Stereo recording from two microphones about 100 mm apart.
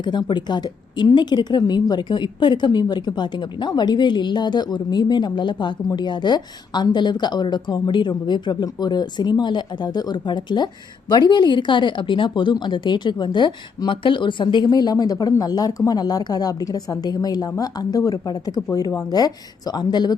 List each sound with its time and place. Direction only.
0.0 s a woman's voice: 50° left (ahead or behind)